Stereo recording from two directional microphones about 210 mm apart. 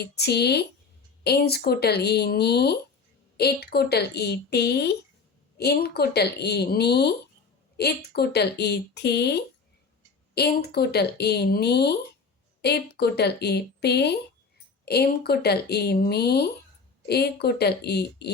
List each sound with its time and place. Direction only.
0.0 s a woman's voice: 50° left (ahead or behind)